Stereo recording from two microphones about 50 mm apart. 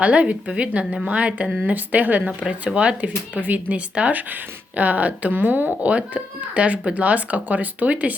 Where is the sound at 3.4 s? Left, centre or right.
Right.